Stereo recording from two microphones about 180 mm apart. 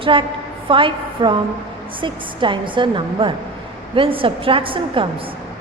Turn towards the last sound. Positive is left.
turn(degrees=-30)  # may be behind; listen again after turning